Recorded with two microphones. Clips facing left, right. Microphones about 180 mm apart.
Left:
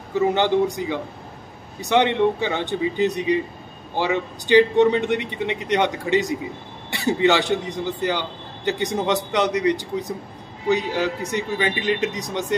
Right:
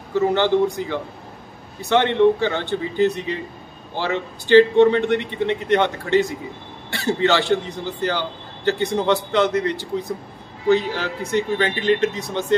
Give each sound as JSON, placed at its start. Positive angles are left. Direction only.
{"t": 0.1, "sound": "a man's voice", "side_deg": 15}